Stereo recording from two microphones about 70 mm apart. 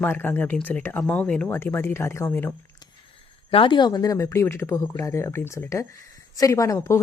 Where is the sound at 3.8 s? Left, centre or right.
Left.